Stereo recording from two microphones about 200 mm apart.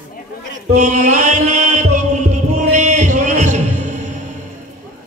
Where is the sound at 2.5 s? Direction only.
35° right (ahead or behind).